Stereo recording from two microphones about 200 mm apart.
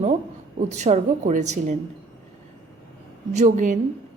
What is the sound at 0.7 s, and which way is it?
A woman's voice, 35° right (ahead or behind).